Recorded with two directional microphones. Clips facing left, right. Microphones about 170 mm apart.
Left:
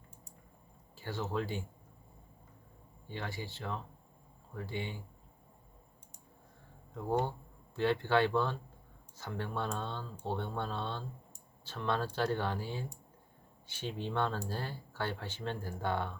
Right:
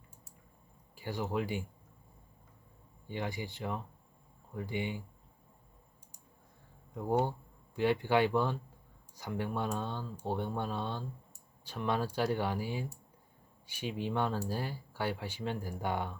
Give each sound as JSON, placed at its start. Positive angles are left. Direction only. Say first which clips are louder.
{"t": 0.9, "sound": "speech", "louder": "right 2 dB", "side_deg": -15}
{"t": 3.1, "sound": "speech", "louder": "right 3 dB", "side_deg": -15}
{"t": 6.9, "sound": "speech", "louder": "right 2 dB", "side_deg": -10}